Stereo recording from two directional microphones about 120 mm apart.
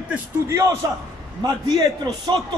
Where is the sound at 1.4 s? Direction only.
35° right (ahead or behind).